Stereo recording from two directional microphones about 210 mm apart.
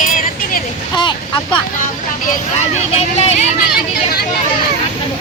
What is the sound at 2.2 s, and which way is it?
Vehicle, 35° left (ahead or behind).